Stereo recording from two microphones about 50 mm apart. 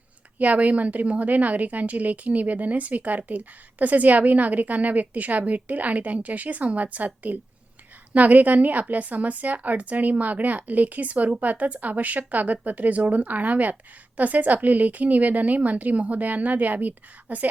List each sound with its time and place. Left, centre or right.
0.3 s a woman's voice: right